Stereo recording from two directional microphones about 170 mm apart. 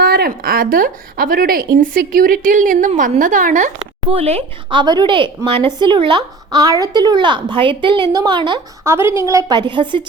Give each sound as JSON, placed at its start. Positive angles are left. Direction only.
{"t": 0.0, "sound": "a woman's voice", "side_deg": -60}
{"t": 4.1, "sound": "speech", "side_deg": -35}